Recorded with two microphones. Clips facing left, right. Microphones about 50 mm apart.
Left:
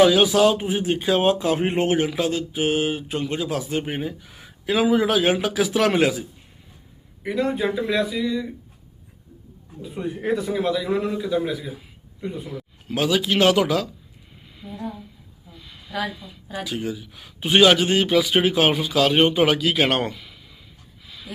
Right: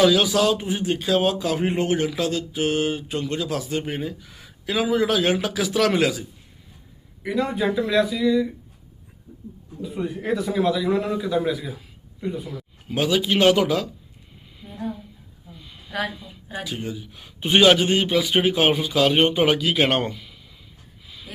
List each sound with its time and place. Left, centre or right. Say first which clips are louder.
0.0 s speech: left 2 dB; centre
2.0 s speech: left 1 dB; centre
7.3 s speech: left 1 dB; centre
7.9 s a man's voice: right 4 dB; centre
10.4 s speech: right 2 dB; centre
10.8 s a man's voice: right 1 dB; centre
15.5 s a sound: left 1 dB; centre
16.0 s speech: even; centre
16.7 s a man's voice: left 3 dB; centre
21.0 s a sound: left 1 dB; centre